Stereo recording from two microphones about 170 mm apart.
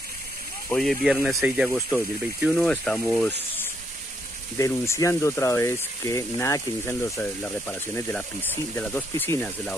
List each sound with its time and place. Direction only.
0.7 s speech: 5° left (ahead or behind)
1.8 s speech: 15° left (ahead or behind)
2.5 s speech: 5° left (ahead or behind)